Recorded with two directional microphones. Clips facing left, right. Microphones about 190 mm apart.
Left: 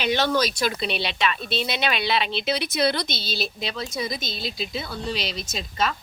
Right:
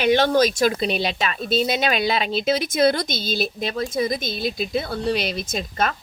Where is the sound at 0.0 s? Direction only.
50° right (ahead or behind).